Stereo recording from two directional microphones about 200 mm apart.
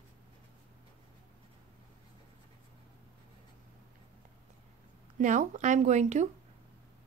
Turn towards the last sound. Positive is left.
turn(degrees=-35)  # may be behind; listen again after turning